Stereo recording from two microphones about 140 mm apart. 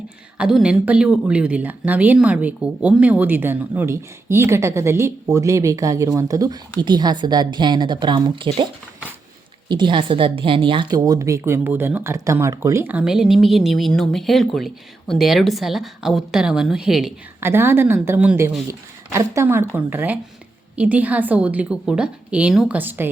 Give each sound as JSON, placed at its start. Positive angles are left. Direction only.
{"t": 0.3, "sound": "speech", "side_deg": -5}
{"t": 9.6, "sound": "speech", "side_deg": -35}
{"t": 17.4, "sound": "speech", "side_deg": -15}